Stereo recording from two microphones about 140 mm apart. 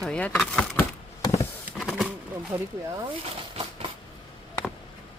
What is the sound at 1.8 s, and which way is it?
Bird, 5° right (ahead or behind).